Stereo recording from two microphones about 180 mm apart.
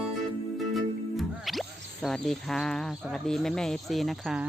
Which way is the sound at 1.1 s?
Centre (ahead or behind).